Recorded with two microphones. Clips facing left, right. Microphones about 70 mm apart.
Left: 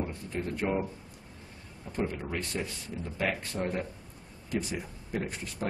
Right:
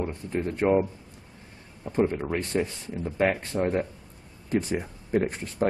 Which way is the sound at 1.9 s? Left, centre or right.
Right.